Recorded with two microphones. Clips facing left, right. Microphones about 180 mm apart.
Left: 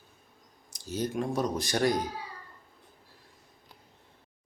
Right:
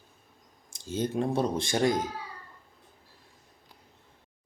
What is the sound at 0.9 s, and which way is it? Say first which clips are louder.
Speech: right 2 dB; 25° right (ahead or behind).